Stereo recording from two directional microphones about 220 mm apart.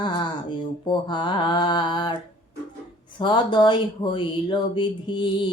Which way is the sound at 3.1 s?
20° left (ahead or behind).